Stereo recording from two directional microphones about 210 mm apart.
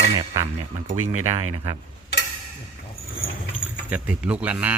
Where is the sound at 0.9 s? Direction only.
90° right.